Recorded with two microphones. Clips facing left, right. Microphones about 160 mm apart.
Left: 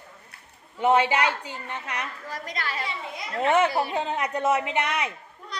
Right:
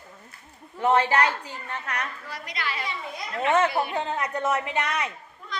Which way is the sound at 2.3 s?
45° left (ahead or behind).